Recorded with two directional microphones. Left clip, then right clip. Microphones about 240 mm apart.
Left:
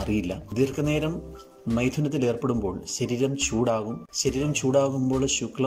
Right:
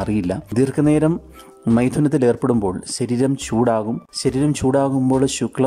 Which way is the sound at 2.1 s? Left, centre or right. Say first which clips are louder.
Right 9 dB; right.